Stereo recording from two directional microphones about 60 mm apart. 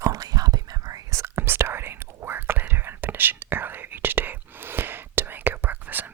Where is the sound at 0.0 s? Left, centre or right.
Right.